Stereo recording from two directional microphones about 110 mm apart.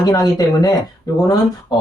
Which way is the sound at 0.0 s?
35° left (ahead or behind).